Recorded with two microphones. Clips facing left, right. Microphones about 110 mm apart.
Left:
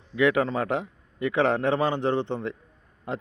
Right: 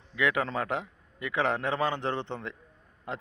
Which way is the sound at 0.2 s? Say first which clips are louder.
Left 6 dB; 25° left (ahead or behind).